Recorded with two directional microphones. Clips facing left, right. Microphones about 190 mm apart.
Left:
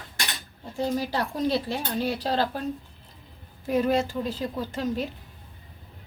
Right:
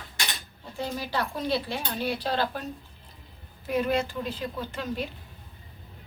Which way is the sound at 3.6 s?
40° left (ahead or behind).